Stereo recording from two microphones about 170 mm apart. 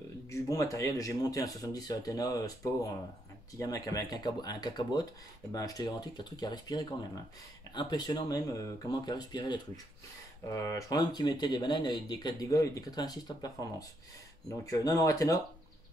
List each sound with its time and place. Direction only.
0.3 s speech: 20° left (ahead or behind)